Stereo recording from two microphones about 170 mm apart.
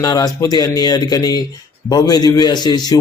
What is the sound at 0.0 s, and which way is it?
A man's voice, 20° left (ahead or behind).